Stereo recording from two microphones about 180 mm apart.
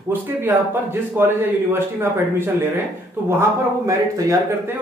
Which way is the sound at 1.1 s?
10° right (ahead or behind).